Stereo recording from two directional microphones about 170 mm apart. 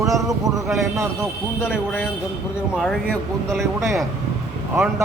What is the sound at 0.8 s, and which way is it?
Mantra, 15° right (ahead or behind).